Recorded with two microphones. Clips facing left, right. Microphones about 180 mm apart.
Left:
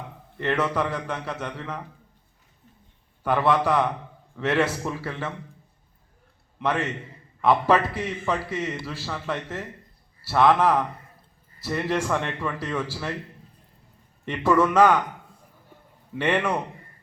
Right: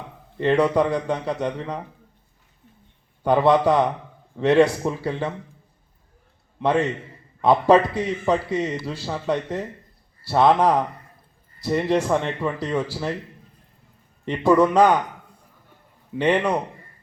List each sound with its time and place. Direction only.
0.3 s a man's voice: 20° right (ahead or behind)
3.2 s a man's voice: 20° right (ahead or behind)
6.6 s a man's voice: 20° right (ahead or behind)
14.3 s a man's voice: 15° right (ahead or behind)
16.1 s a man's voice: 15° right (ahead or behind)